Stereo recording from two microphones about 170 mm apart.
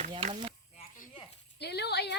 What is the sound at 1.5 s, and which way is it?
Speech, 75° left (ahead or behind).